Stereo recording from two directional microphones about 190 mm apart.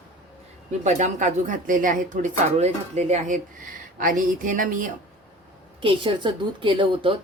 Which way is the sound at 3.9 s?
45° right (ahead or behind).